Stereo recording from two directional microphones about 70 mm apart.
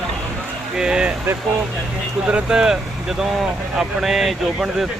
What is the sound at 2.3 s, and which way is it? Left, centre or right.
Speech, centre.